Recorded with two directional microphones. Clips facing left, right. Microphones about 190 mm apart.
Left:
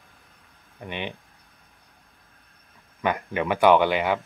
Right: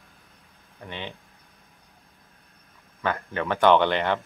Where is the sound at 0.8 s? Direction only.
15° left (ahead or behind).